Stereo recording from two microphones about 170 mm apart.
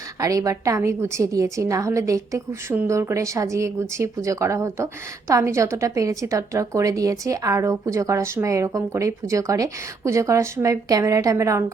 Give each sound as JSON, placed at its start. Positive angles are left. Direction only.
{"t": 0.2, "sound": "a woman's voice", "side_deg": -20}